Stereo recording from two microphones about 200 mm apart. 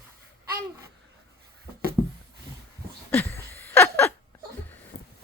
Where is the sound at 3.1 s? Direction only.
10° left (ahead or behind).